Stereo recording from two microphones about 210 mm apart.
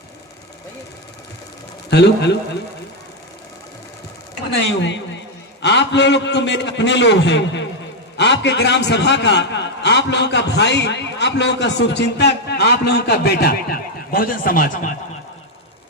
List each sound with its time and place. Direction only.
1.9 s speech: 55° left (ahead or behind)
4.5 s a man's voice: 60° left (ahead or behind); by 14.9 s 40° left (ahead or behind)